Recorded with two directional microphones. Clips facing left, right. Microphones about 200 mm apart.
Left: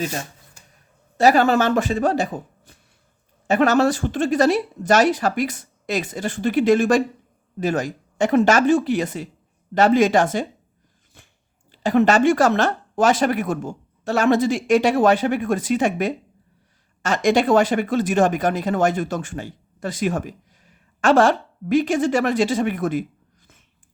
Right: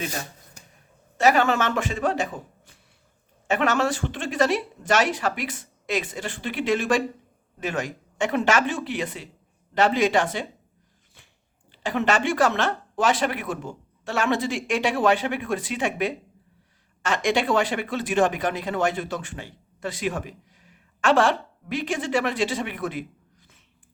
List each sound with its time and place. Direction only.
1.1 s speech: 35° left (ahead or behind)
11.7 s a woman's voice: 40° left (ahead or behind)